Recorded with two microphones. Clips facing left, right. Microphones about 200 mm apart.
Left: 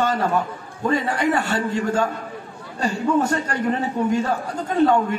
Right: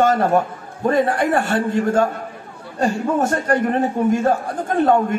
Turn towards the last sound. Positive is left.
turn(degrees=-50)  # may be behind; listen again after turning